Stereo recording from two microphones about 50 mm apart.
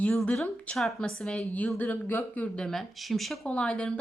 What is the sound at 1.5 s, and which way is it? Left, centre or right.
Speech, left.